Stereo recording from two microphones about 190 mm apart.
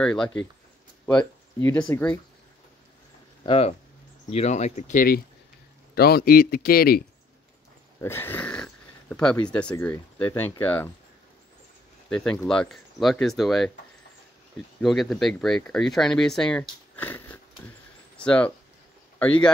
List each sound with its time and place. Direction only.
0.0 s speech: 5° left (ahead or behind)
1.0 s a sound: 10° left (ahead or behind)
3.4 s a man's voice: 30° left (ahead or behind); by 7.0 s 50° left (ahead or behind)
8.0 s speech: 10° left (ahead or behind)
12.1 s speech: 5° left (ahead or behind)
14.8 s speech: centre (ahead or behind)